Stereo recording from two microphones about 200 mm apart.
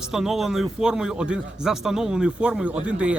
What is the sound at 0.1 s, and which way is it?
A man's voice, centre (ahead or behind).